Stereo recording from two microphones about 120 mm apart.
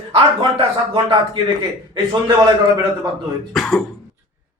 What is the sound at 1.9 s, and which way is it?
Speech, 40° right (ahead or behind).